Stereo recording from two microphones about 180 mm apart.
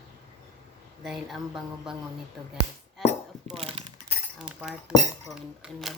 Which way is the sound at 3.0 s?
Centre (ahead or behind).